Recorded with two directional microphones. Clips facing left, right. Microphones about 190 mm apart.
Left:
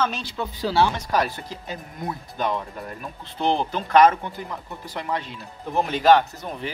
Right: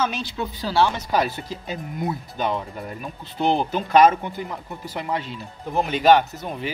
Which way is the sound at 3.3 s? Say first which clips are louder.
Right 2 dB; 10° right (ahead or behind).